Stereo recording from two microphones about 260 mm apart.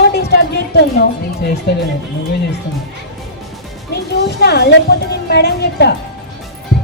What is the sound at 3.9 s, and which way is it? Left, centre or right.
A woman's voice, left.